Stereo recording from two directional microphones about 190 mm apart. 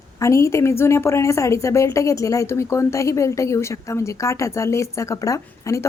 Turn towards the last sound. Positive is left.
turn(degrees=15)  # may be behind; listen again after turning